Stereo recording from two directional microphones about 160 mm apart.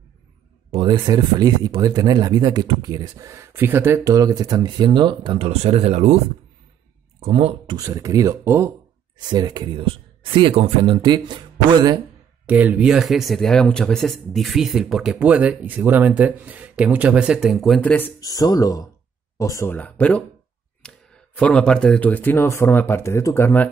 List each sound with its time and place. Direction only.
0.7 s speech: 30° right (ahead or behind)
7.7 s speech: 20° right (ahead or behind)
12.4 s speech: 10° right (ahead or behind); by 18.1 s 10° left (ahead or behind)
18.2 s speech: 25° left (ahead or behind)